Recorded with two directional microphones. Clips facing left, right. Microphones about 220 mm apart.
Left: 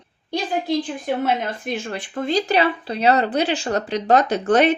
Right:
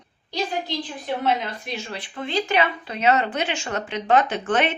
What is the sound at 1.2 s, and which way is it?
Speech, 50° left (ahead or behind).